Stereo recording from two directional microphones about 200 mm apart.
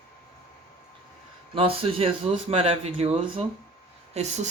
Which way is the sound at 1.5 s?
30° right (ahead or behind).